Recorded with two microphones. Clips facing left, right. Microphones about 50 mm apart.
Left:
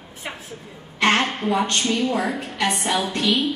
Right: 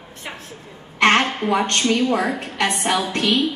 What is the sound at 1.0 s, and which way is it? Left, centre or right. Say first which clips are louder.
A woman's voice: right 3 dB; right.